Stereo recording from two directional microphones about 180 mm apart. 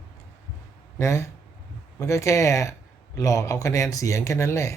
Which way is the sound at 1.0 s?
15° left (ahead or behind).